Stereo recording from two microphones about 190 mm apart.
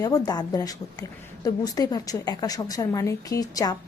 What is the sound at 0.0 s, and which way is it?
A woman's voice, 20° left (ahead or behind).